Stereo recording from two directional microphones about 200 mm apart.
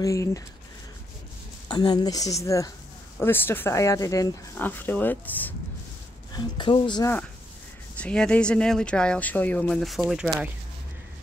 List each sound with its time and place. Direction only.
0.0 s speech: 15° left (ahead or behind)
1.7 s speech: 20° left (ahead or behind)
6.3 s a woman's voice: 25° left (ahead or behind)
8.0 s speech: 5° left (ahead or behind)